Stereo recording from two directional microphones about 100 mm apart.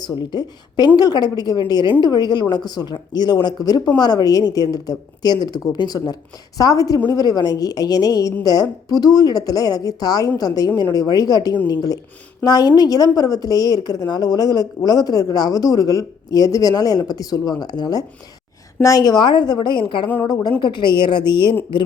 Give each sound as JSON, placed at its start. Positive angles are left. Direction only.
{"t": 0.2, "sound": "a woman's voice", "side_deg": 45}